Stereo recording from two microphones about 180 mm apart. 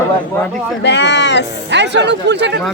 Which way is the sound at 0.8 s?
75° left (ahead or behind).